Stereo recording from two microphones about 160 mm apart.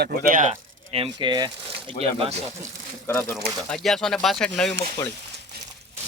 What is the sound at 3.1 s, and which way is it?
Speech, 15° left (ahead or behind).